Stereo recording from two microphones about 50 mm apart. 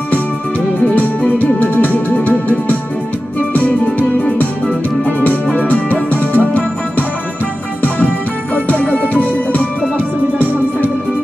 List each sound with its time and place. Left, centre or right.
0.9 s music: left
5.0 s music: left
8.5 s music: left
9.9 s music: right